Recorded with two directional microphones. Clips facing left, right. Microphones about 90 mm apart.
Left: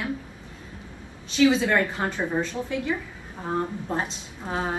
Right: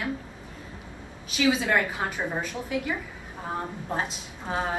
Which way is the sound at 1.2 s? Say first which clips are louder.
Left 4 dB; 5° right (ahead or behind).